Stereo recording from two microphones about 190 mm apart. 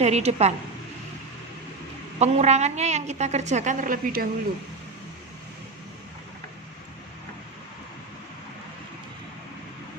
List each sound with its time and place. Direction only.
0.0 s a woman's voice: 35° right (ahead or behind)
2.1 s a woman's voice: 35° right (ahead or behind)